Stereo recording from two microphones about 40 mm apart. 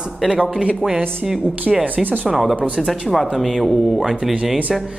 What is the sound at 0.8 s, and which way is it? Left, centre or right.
Speech, right.